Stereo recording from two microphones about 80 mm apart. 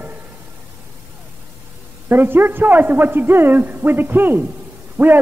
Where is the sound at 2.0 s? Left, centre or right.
Right.